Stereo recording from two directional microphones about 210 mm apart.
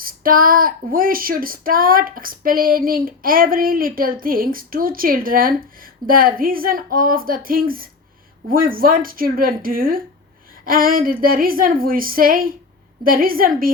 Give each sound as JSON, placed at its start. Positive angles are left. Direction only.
{"t": 0.0, "sound": "speech", "side_deg": -40}